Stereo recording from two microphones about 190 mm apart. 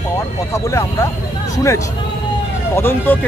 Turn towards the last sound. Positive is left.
turn(degrees=10)  # may be behind; listen again after turning